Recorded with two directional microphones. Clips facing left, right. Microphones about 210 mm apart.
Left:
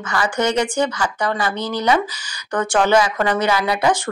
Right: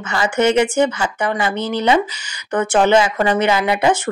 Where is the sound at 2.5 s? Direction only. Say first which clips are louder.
Right 2 dB; 25° right (ahead or behind).